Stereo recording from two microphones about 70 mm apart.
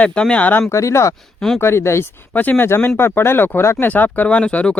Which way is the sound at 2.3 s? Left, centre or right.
Left.